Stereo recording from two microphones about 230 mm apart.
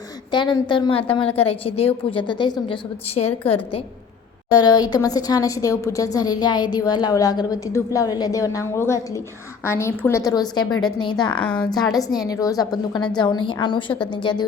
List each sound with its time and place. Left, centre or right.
0.3 s a woman's voice: centre
4.5 s a woman's voice: centre
11.3 s a woman's voice: centre
11.7 s a woman's voice: centre